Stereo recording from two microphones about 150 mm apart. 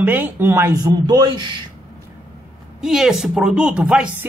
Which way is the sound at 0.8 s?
25° right (ahead or behind).